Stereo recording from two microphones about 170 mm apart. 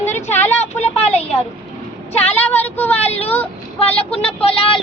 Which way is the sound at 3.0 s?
40° left (ahead or behind).